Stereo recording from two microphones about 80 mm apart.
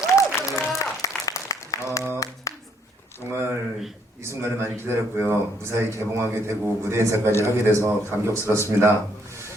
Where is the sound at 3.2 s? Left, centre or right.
Right.